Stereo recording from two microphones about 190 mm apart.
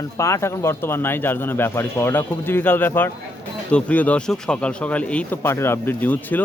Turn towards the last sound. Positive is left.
turn(degrees=10)  # may be behind; listen again after turning